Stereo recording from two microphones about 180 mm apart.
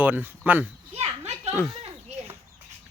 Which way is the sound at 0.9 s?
35° right (ahead or behind).